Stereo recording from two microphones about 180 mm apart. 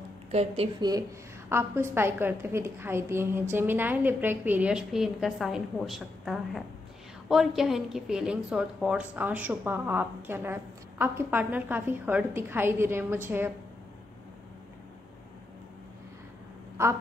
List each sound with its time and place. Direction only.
0.3 s speech: 35° right (ahead or behind)
0.7 s a woman's voice: 20° right (ahead or behind)